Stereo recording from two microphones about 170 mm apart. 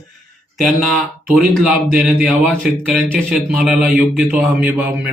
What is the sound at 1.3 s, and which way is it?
A man's voice, 5° right (ahead or behind).